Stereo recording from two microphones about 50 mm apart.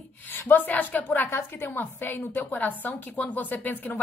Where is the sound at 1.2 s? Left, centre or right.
Left.